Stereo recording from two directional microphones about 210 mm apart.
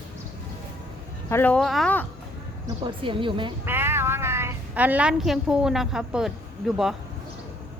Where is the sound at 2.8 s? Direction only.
25° right (ahead or behind).